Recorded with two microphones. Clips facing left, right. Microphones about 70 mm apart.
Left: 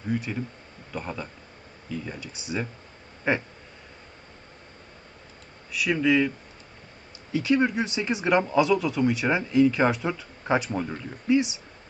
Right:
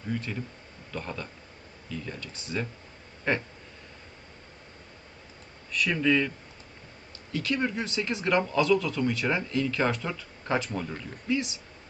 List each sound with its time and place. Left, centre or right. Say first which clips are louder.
0.1 s speech: left 4 dB; centre
5.7 s speech: left 3 dB; centre
7.3 s speech: left 6 dB; centre